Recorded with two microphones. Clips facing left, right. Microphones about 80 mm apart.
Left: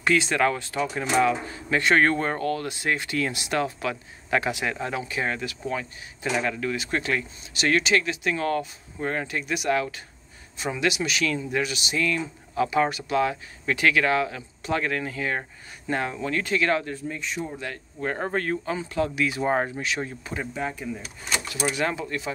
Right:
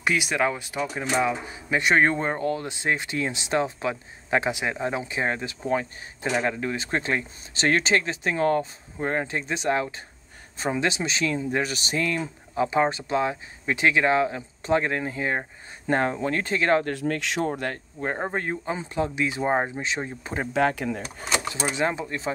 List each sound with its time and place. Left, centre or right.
0.0 s speech: centre; by 16.8 s right
16.8 s speech: right
18.0 s speech: centre
20.5 s speech: right
21.0 s speech: right